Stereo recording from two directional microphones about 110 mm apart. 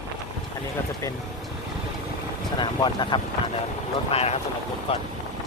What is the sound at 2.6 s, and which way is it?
Speech, 45° left (ahead or behind).